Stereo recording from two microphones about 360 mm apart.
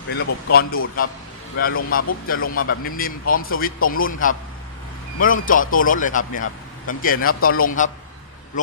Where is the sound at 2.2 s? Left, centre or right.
Left.